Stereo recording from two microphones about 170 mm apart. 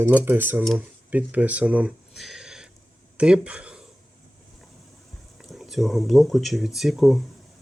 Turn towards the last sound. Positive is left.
turn(degrees=0)  # may be behind; listen again after turning